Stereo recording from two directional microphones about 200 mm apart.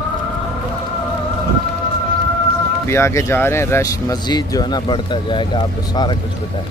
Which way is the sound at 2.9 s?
15° left (ahead or behind).